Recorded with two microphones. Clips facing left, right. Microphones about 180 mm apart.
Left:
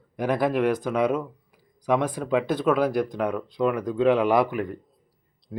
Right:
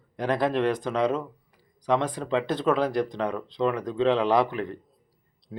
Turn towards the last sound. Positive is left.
turn(degrees=0)  # may be behind; listen again after turning